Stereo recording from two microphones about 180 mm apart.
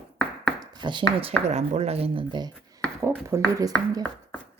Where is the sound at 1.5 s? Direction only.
35° right (ahead or behind).